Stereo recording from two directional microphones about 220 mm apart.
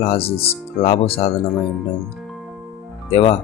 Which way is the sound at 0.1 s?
25° left (ahead or behind).